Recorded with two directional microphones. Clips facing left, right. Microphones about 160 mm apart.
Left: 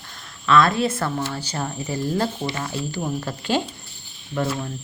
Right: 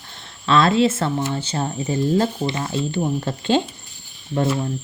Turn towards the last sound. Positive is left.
turn(degrees=-25)  # may be behind; listen again after turning